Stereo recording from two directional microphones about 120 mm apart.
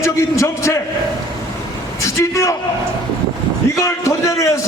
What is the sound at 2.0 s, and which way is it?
Speech, 25° left (ahead or behind).